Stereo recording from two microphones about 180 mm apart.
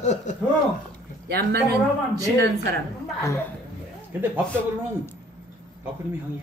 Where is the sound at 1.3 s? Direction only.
60° right (ahead or behind).